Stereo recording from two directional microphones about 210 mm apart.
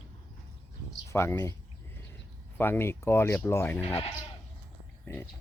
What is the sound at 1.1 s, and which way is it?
Speech, 15° left (ahead or behind).